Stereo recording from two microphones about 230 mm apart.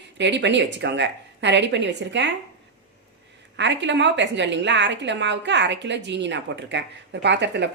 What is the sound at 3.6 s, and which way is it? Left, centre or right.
A woman's voice, right.